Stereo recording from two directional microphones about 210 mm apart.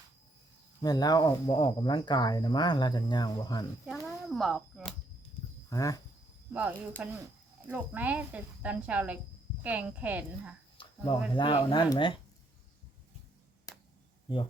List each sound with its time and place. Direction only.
0.8 s speech: 20° left (ahead or behind)
3.8 s a sound: centre (ahead or behind)
5.7 s speech: 15° left (ahead or behind)
6.5 s speech: 5° right (ahead or behind)
10.8 s speech: 25° left (ahead or behind)